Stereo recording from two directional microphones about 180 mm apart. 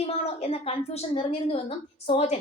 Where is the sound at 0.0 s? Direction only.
35° left (ahead or behind).